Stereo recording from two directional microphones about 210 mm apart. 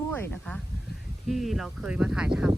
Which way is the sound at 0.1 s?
10° left (ahead or behind).